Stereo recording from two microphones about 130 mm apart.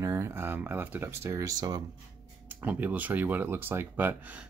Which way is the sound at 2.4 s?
15° right (ahead or behind).